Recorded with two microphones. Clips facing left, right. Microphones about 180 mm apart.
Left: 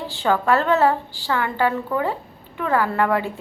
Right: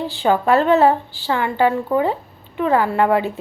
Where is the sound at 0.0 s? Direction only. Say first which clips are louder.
Right 3 dB; 15° right (ahead or behind).